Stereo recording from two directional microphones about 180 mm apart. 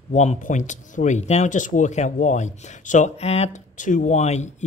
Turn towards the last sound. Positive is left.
turn(degrees=40)  # may be behind; listen again after turning